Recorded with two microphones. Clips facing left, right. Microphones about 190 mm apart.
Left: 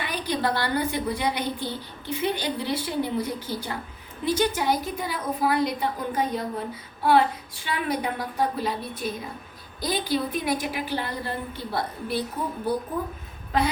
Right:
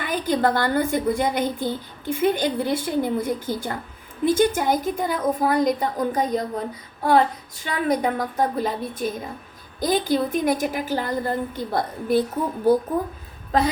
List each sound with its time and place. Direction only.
0.0 s a woman's voice: 50° right (ahead or behind)